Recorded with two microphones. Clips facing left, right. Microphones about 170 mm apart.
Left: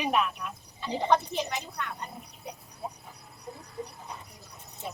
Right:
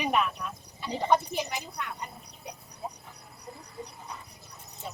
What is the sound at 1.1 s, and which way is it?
Speech, 10° right (ahead or behind).